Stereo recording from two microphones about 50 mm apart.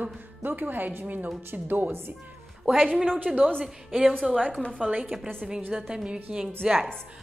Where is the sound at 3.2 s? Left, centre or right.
Right.